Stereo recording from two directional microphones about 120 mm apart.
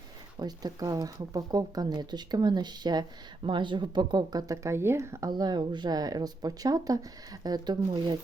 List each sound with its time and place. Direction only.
0.3 s speech: 35° right (ahead or behind)
5.3 s speech: 35° right (ahead or behind)